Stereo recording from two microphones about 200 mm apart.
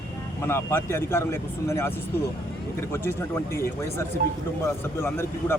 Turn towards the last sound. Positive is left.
turn(degrees=10)  # may be behind; listen again after turning